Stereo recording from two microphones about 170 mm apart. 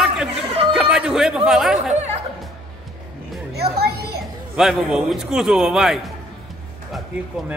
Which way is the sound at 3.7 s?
65° right (ahead or behind).